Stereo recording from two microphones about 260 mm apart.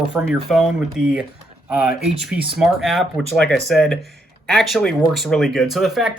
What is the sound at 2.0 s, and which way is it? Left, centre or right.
Speech, centre.